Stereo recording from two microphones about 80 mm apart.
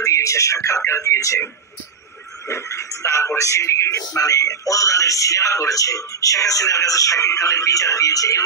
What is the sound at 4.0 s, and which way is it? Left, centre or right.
Speech, left.